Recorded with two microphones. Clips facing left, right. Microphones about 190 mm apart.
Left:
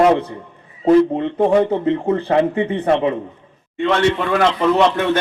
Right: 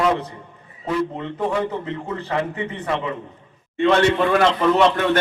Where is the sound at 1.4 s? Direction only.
40° left (ahead or behind).